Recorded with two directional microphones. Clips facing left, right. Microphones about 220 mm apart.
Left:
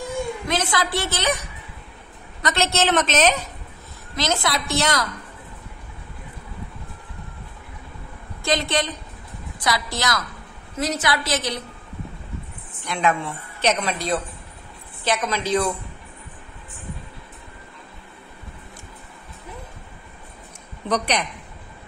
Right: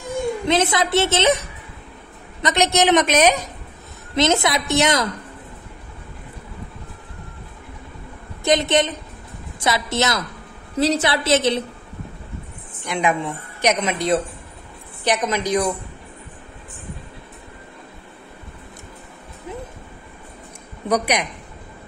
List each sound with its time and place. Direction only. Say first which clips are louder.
0.5 s a woman's voice: right 6 dB; 25° right (ahead or behind)
2.4 s a woman's voice: right 4 dB; 15° right (ahead or behind)
4.1 s a woman's voice: right 6 dB; 20° right (ahead or behind)
8.5 s a woman's voice: right 5 dB; 20° right (ahead or behind)
12.8 s a woman's voice: right 2 dB; 15° right (ahead or behind)
20.9 s a woman's voice: right 3 dB; 10° right (ahead or behind)